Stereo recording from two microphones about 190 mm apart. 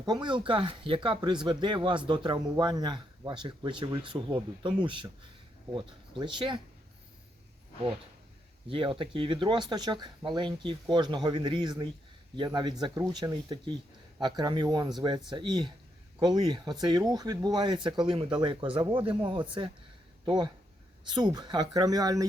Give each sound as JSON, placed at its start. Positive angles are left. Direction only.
{"t": 0.0, "sound": "speech", "side_deg": -20}
{"t": 8.7, "sound": "speech", "side_deg": -25}